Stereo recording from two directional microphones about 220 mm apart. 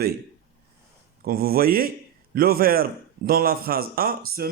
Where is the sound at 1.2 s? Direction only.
45° right (ahead or behind).